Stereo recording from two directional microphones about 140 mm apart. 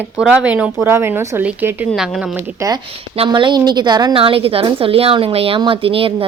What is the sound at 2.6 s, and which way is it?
Speech, 20° right (ahead or behind).